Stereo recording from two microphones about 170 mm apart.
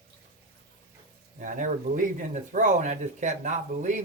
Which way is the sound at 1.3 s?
50° right (ahead or behind).